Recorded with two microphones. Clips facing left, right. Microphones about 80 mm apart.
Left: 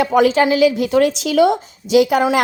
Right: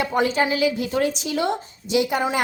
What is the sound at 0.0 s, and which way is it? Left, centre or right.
Speech, left.